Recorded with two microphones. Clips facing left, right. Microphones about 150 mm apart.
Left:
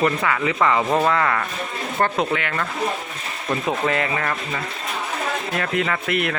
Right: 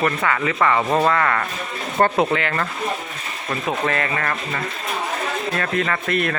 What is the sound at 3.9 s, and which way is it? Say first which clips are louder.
Speech: left 1 dB; 15° left (ahead or behind).